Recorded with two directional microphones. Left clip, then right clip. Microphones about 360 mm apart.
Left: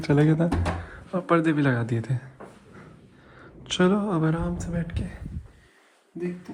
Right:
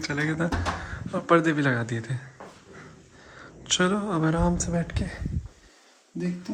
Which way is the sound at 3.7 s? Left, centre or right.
Centre.